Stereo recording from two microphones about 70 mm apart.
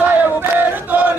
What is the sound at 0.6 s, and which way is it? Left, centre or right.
Chant, right.